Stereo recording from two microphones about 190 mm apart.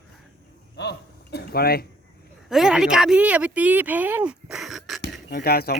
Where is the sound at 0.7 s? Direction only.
60° left (ahead or behind).